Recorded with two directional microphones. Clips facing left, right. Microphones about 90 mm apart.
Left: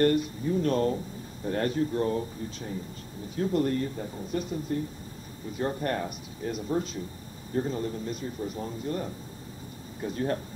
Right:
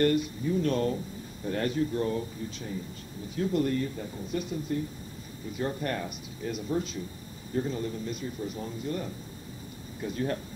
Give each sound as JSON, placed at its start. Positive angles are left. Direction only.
{"t": 0.0, "sound": "speech", "side_deg": 40}